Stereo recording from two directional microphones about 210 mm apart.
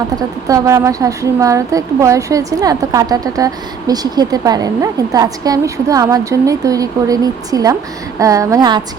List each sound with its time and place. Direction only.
0.2 s a woman's voice: 15° right (ahead or behind)